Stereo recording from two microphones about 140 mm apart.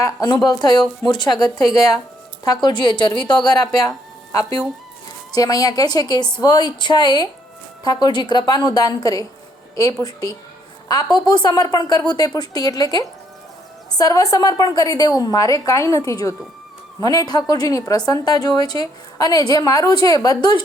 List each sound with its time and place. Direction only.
0.0 s a woman's voice: 30° left (ahead or behind)